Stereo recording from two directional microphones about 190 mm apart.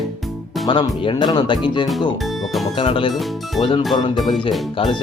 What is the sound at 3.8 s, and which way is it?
Speech, centre (ahead or behind).